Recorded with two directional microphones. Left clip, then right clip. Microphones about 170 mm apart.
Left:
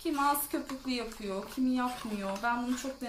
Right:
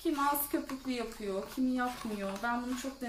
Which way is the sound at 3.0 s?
35° left (ahead or behind).